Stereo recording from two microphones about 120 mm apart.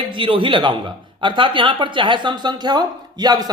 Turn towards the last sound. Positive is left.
turn(degrees=-35)  # may be behind; listen again after turning